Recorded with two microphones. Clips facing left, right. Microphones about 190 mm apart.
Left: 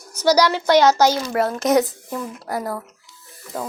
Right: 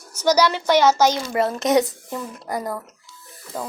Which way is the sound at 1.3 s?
Centre (ahead or behind).